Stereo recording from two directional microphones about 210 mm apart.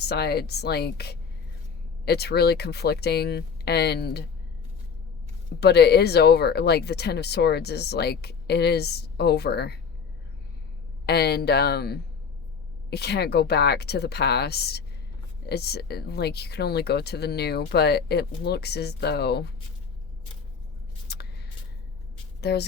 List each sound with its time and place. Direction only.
0.0 s speech: 50° left (ahead or behind)
5.5 s speech: 50° left (ahead or behind)
11.0 s speech: 50° left (ahead or behind)
21.1 s a sound: 50° left (ahead or behind)
22.4 s speech: 50° left (ahead or behind)